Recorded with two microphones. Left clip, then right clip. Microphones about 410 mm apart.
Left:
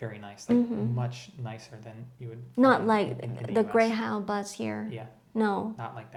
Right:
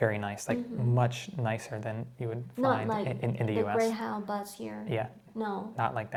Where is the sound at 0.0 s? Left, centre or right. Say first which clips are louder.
Right 10 dB; right.